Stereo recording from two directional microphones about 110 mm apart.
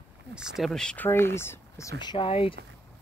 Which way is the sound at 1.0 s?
20° left (ahead or behind).